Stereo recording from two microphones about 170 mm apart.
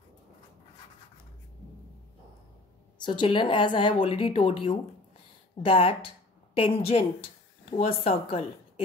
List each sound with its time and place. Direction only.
3.0 s a woman's voice: 30° left (ahead or behind)